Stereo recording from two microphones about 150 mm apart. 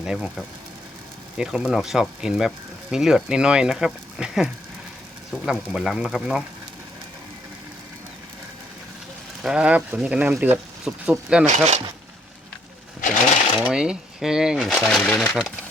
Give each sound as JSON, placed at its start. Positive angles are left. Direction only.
{"t": 0.0, "sound": "speech", "side_deg": -5}
{"t": 9.4, "sound": "speech", "side_deg": -5}
{"t": 11.4, "sound": "speech", "side_deg": -50}
{"t": 13.7, "sound": "speech", "side_deg": -5}
{"t": 14.8, "sound": "speech", "side_deg": 5}